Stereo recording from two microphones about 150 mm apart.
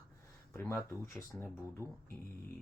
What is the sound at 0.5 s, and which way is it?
Speech, 15° left (ahead or behind).